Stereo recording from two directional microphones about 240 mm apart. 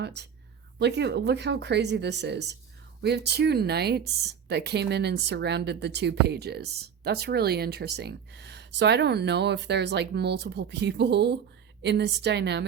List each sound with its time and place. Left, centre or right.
0.0 s speech: right